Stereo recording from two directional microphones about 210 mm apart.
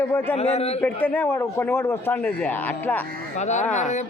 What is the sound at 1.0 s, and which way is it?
A man's voice, 10° left (ahead or behind).